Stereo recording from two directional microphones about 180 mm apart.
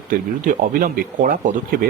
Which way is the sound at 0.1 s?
50° right (ahead or behind).